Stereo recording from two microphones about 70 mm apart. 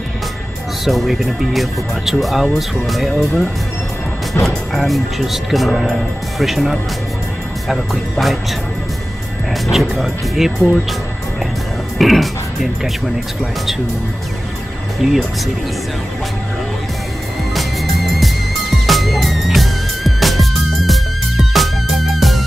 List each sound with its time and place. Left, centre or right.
0.8 s speech: centre
9.5 s speech: centre
12.0 s speech: centre
15.0 s speech: centre
18.9 s music: centre